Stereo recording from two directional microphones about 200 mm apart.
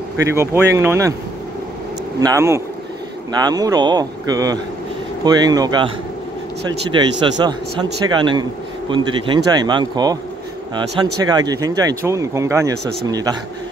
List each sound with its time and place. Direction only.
0.2 s speech: 15° right (ahead or behind)
2.1 s a man's voice: 15° right (ahead or behind)
6.9 s a man's voice: 20° right (ahead or behind)